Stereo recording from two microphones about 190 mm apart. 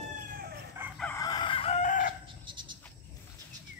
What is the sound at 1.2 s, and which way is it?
Chicken, 25° left (ahead or behind).